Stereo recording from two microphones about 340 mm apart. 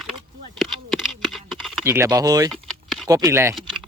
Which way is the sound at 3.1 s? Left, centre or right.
Centre.